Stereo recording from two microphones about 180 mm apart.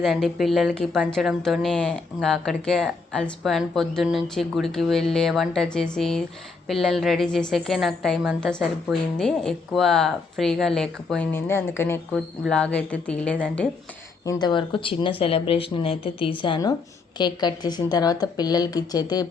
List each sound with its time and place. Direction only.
0.0 s a woman's voice: centre (ahead or behind)
12.1 s a woman's voice: centre (ahead or behind)
14.3 s a woman's voice: 25° left (ahead or behind)